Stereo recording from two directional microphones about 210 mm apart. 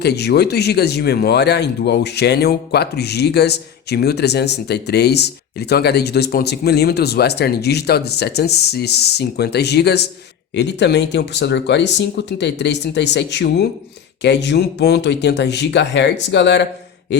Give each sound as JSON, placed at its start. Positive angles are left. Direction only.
{"t": 0.0, "sound": "speech", "side_deg": 50}